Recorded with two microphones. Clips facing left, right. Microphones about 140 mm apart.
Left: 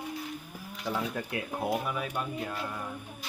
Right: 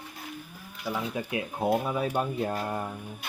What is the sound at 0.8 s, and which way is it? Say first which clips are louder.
Speech: right 1 dB; 10° right (ahead or behind).